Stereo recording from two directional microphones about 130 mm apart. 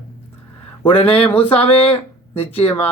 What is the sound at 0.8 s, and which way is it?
Speech, 45° left (ahead or behind).